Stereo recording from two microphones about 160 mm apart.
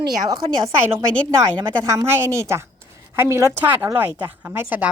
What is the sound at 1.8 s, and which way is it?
A woman's voice, 20° right (ahead or behind).